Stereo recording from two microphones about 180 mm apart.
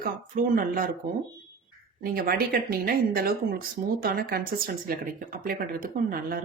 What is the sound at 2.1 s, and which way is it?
Speech, 55° right (ahead or behind).